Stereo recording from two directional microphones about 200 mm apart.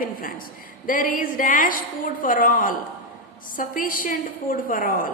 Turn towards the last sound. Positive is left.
turn(degrees=45)  # may be behind; listen again after turning